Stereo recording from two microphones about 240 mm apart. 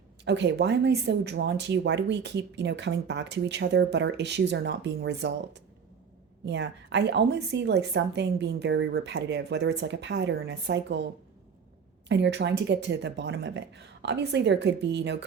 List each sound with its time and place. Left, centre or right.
0.3 s speech: right
12.0 s speech: right